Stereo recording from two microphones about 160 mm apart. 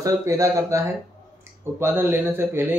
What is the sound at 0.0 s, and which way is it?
Speech, 20° right (ahead or behind).